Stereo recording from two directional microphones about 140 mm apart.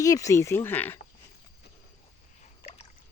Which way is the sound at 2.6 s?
50° left (ahead or behind).